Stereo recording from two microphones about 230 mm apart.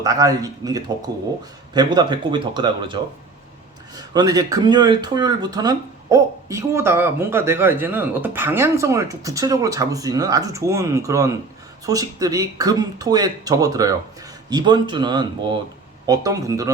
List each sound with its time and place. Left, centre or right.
0.0 s speech: centre